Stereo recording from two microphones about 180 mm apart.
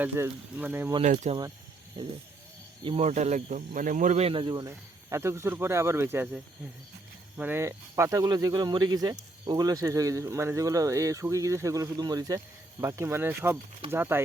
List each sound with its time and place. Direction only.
0.0 s speech: 10° right (ahead or behind)
1.0 s speech: 40° right (ahead or behind)
2.8 s speech: 35° right (ahead or behind)
4.7 s speech: 15° right (ahead or behind)